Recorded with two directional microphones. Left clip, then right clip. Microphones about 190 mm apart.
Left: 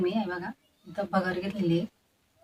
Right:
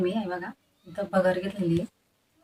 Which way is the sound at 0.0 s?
Centre (ahead or behind).